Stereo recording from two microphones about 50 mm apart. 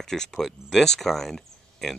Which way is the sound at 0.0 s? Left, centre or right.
Centre.